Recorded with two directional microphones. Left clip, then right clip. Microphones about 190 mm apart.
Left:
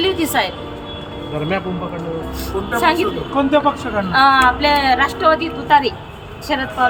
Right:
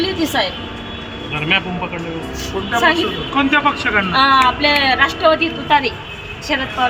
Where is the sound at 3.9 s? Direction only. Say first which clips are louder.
Left 1 dB; 30° left (ahead or behind).